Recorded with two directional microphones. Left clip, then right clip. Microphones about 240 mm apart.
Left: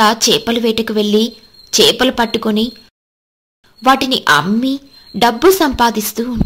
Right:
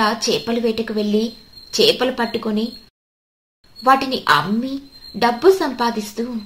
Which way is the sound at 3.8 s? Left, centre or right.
Left.